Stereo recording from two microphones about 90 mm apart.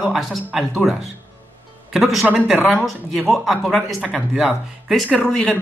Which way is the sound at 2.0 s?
Centre (ahead or behind).